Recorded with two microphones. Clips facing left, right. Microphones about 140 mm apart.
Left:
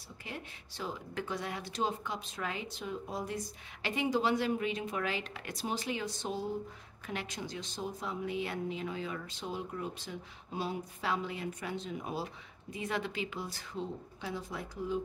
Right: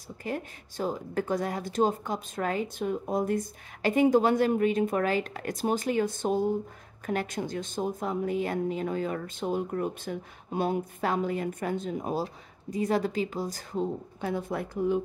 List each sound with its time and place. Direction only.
0.2 s speech: 45° right (ahead or behind)